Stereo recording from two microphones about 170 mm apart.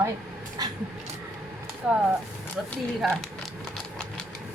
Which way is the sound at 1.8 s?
5° right (ahead or behind).